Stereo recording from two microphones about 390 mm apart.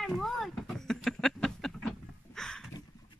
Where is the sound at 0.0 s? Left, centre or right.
Centre.